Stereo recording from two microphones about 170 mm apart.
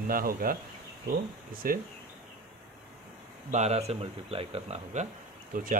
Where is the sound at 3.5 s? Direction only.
40° right (ahead or behind).